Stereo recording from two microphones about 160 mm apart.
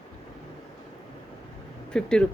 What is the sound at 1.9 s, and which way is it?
Speech, 5° left (ahead or behind).